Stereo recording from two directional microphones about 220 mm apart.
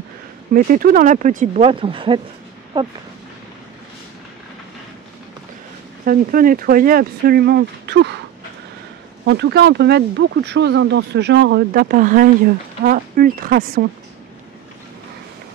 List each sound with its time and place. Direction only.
0.5 s speech: 40° right (ahead or behind); by 2.9 s 20° right (ahead or behind)
6.0 s speech: 40° right (ahead or behind)
9.2 s speech: 50° right (ahead or behind)